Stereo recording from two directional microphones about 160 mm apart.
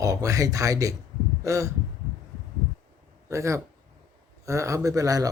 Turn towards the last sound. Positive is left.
turn(degrees=-20)  # may be behind; listen again after turning